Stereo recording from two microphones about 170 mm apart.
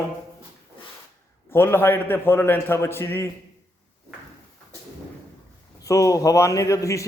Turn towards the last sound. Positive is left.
turn(degrees=20)  # may be behind; listen again after turning